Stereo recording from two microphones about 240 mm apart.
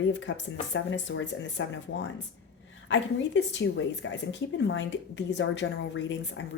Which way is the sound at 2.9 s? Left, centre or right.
Left.